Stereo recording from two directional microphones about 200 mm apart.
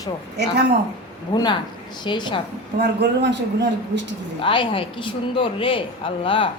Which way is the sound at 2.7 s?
55° right (ahead or behind).